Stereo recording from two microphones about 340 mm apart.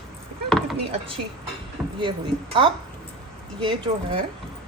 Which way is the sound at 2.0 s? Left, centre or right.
Centre.